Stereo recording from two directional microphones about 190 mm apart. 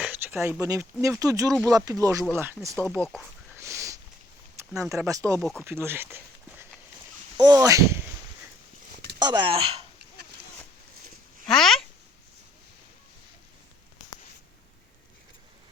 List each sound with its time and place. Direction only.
0.0 s a sound: 10° right (ahead or behind)
1.0 s speech: 15° right (ahead or behind)
2.7 s speech: 5° left (ahead or behind)
3.5 s a sound: 15° right (ahead or behind)
4.8 s speech: centre (ahead or behind)
5.0 s speech: 15° right (ahead or behind)
5.4 s speech: centre (ahead or behind)
5.6 s speech: 10° right (ahead or behind)
9.1 s speech: 25° right (ahead or behind)
11.4 s speech: centre (ahead or behind)